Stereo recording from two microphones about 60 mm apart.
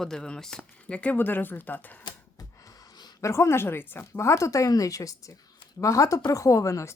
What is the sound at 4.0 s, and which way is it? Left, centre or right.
Speech, left.